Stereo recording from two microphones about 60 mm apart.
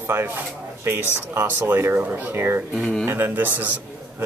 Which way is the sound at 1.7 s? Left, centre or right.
Right.